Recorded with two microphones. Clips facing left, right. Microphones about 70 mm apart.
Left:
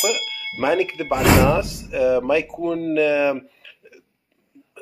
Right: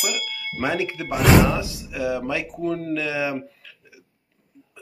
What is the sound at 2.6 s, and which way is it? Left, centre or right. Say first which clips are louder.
Speech: left 3 dB; right.